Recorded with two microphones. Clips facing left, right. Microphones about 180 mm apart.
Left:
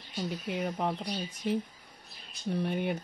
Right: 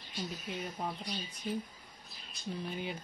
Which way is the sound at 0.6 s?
70° left (ahead or behind).